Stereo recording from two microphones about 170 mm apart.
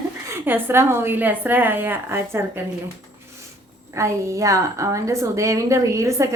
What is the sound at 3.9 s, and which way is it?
A woman's voice, 15° right (ahead or behind).